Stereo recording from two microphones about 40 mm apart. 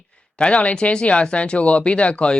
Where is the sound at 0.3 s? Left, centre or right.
Left.